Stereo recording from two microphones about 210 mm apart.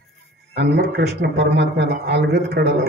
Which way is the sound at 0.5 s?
50° right (ahead or behind).